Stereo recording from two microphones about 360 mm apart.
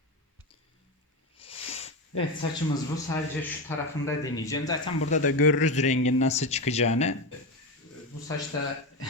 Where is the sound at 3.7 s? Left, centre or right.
Centre.